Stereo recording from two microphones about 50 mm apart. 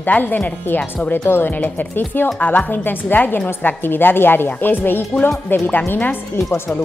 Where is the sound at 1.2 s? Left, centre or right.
Left.